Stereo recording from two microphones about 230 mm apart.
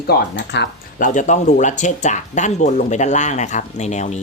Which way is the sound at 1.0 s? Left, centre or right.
Left.